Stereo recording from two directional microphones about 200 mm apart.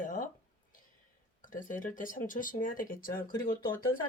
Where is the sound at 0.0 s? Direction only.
40° left (ahead or behind).